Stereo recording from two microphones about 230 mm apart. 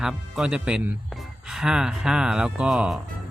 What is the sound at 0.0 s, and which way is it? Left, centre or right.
Speech, centre.